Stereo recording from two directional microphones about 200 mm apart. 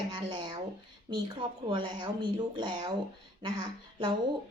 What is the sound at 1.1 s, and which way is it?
A woman's voice, 25° right (ahead or behind).